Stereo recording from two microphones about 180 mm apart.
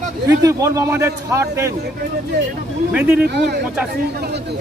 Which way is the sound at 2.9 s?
10° right (ahead or behind).